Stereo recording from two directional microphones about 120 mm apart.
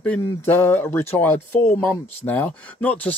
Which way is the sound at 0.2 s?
20° left (ahead or behind).